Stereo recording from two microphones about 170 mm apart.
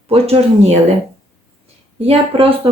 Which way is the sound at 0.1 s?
35° right (ahead or behind).